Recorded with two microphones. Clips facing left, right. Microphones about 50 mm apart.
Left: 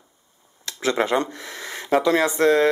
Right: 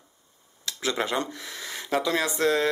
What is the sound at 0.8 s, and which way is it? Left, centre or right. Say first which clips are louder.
Speech: left 6 dB; left.